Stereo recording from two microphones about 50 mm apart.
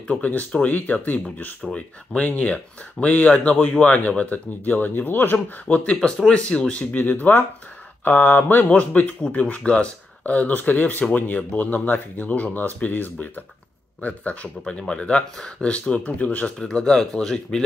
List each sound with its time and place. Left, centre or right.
0.1 s speech: left
5.9 s speech: centre
6.7 s speech: left
8.6 s speech: left
16.5 s speech: centre